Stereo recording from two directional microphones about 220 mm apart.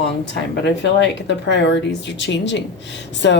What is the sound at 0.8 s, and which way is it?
A woman's voice, 55° left (ahead or behind).